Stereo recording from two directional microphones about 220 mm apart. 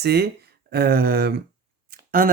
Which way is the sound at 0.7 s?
45° right (ahead or behind).